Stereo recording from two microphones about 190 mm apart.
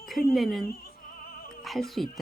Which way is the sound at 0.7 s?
55° left (ahead or behind).